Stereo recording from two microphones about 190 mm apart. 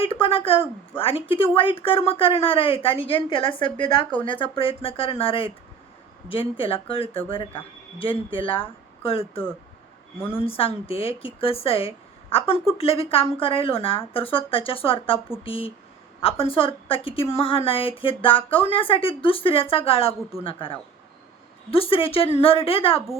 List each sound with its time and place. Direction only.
0.0 s a woman's voice: 30° left (ahead or behind)
10.4 s a woman's voice: 30° left (ahead or behind)